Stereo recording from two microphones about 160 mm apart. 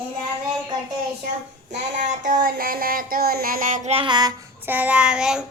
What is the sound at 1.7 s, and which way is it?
Child singing, 50° right (ahead or behind).